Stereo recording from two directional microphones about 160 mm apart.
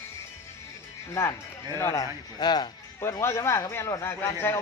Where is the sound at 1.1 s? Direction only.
20° left (ahead or behind).